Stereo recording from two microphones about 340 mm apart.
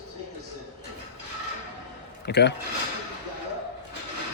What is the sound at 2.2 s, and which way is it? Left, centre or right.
Speech, left.